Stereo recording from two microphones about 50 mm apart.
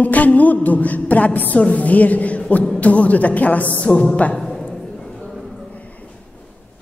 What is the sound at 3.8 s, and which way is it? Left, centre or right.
Speech, left.